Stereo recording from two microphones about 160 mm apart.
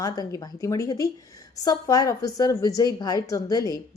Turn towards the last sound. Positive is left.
turn(degrees=25)  # may be behind; listen again after turning